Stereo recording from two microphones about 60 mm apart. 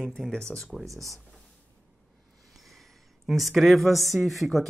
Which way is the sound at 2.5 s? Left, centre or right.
Centre.